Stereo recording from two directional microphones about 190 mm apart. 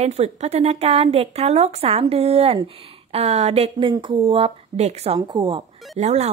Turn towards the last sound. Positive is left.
turn(degrees=-35)  # may be behind; listen again after turning